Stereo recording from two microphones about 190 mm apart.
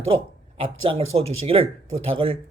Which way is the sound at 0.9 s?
30° right (ahead or behind).